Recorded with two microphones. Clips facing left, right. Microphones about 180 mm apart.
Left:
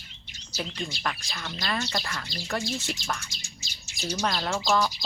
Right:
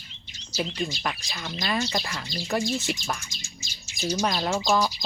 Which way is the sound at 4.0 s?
15° right (ahead or behind).